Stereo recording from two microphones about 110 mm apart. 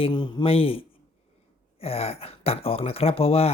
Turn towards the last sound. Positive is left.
turn(degrees=60)  # may be behind; listen again after turning